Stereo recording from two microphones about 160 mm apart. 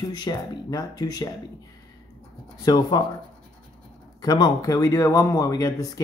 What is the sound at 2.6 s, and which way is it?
Speech, 25° left (ahead or behind).